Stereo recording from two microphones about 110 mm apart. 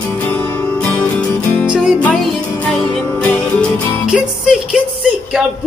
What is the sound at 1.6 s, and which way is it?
Music, 10° right (ahead or behind).